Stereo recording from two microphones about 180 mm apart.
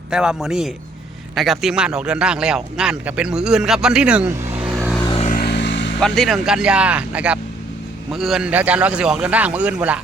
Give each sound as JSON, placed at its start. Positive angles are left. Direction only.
{"t": 0.1, "sound": "a man's voice", "side_deg": -5}
{"t": 5.4, "sound": "vehicle", "side_deg": 70}
{"t": 6.0, "sound": "a man's voice", "side_deg": 5}